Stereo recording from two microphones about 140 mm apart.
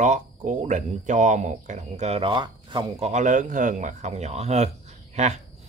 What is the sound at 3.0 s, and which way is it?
Speech, 60° right (ahead or behind).